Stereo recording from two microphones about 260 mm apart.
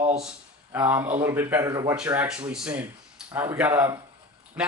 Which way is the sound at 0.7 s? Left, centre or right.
Centre.